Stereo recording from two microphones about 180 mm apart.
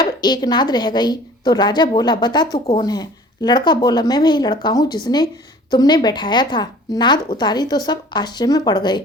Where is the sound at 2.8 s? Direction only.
20° left (ahead or behind).